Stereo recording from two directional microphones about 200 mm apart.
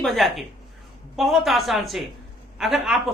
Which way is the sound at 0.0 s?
Centre (ahead or behind).